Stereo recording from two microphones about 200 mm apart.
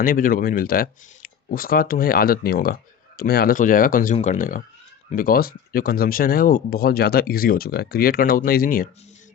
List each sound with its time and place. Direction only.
0.0 s speech: 45° left (ahead or behind)